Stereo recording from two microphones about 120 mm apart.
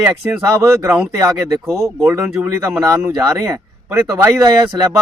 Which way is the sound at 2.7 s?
25° right (ahead or behind).